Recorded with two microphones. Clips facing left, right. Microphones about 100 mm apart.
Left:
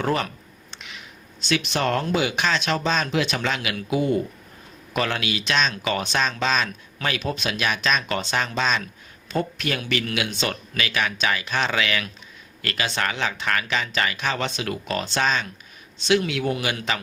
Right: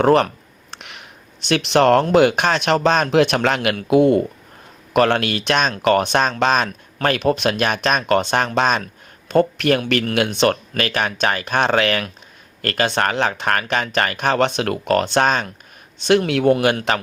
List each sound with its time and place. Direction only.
0.0 s speech: 60° right (ahead or behind)